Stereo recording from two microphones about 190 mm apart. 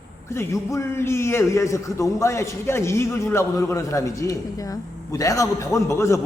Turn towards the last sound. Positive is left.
turn(degrees=15)  # may be behind; listen again after turning